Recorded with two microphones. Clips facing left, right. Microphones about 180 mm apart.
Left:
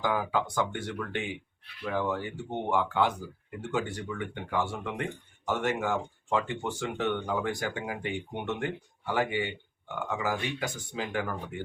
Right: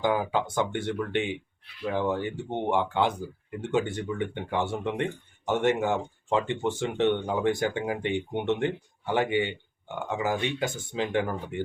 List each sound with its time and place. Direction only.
0.0 s speech: 25° right (ahead or behind)